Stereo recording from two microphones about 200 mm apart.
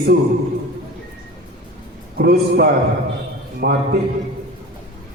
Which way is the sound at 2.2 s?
50° right (ahead or behind).